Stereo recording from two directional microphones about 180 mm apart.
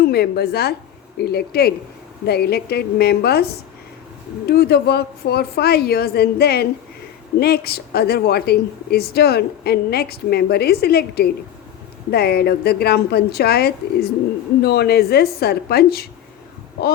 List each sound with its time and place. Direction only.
0.0 s speech: 60° left (ahead or behind)